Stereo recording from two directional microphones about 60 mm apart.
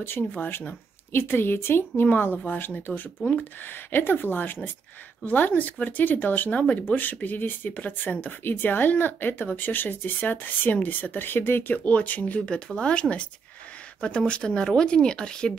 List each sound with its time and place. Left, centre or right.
0.3 s speech: left; by 13.0 s centre
14.0 s speech: centre